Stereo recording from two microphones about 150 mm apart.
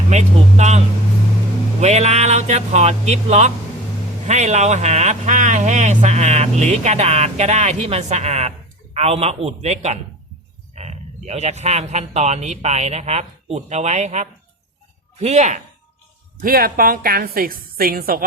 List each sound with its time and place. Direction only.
0.1 s speech: 50° right (ahead or behind)
1.8 s speech: 50° right (ahead or behind)
10.8 s a sound: 45° right (ahead or behind)
11.3 s speech: 45° right (ahead or behind)
16.4 s a woman's voice: 75° right (ahead or behind)